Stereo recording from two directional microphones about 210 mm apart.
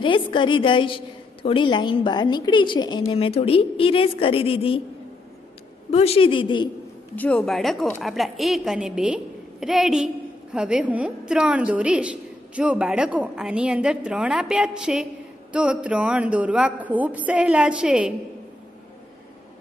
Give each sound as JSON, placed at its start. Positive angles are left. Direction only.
{"t": 0.0, "sound": "a woman's voice", "side_deg": 25}
{"t": 5.9, "sound": "a woman's voice", "side_deg": 30}
{"t": 7.2, "sound": "a woman's voice", "side_deg": 5}